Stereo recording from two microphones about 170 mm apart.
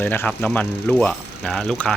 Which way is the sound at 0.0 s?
10° left (ahead or behind).